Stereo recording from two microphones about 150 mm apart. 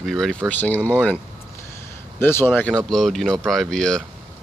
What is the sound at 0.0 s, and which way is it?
Speech, centre (ahead or behind).